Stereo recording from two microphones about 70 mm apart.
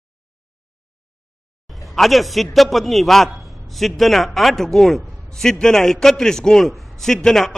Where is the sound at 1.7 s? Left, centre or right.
Centre.